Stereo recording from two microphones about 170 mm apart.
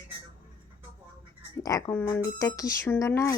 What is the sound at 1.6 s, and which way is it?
Speech, 20° left (ahead or behind).